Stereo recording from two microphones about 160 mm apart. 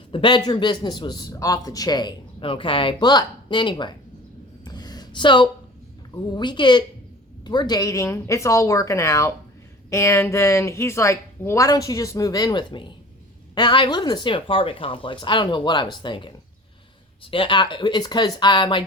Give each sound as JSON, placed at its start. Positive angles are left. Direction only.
{"t": 0.1, "sound": "a man's voice", "side_deg": 30}
{"t": 4.6, "sound": "a sound", "side_deg": 25}
{"t": 6.3, "sound": "a man's voice", "side_deg": 30}
{"t": 17.3, "sound": "a man's voice", "side_deg": 30}